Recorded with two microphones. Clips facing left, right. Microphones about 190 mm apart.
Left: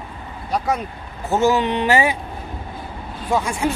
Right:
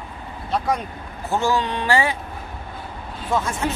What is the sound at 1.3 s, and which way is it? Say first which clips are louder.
Speech: left 4 dB; 20° left (ahead or behind).